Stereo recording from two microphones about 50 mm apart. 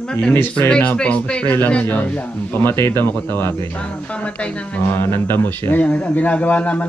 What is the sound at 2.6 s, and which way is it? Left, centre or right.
Speech, left.